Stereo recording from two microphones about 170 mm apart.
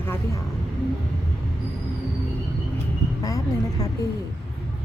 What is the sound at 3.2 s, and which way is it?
Speech, 20° left (ahead or behind).